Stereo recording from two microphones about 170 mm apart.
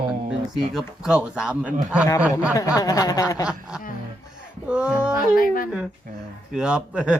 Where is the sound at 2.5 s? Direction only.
20° left (ahead or behind).